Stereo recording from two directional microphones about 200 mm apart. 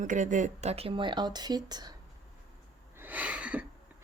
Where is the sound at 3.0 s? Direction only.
10° right (ahead or behind).